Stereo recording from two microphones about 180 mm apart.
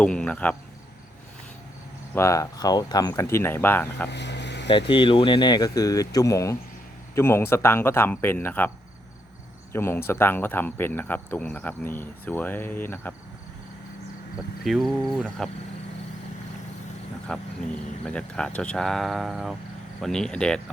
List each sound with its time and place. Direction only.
0.0 s speech: 5° left (ahead or behind)
2.1 s speech: 15° left (ahead or behind)
4.1 s a sound: 75° left (ahead or behind)
4.7 s speech: 30° left (ahead or behind); by 8.7 s 10° left (ahead or behind)
9.7 s speech: 10° left (ahead or behind)
14.6 s speech: centre (ahead or behind)
17.3 s speech: 5° left (ahead or behind)